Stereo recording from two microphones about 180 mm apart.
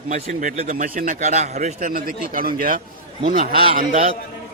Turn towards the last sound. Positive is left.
turn(degrees=-40)  # may be behind; listen again after turning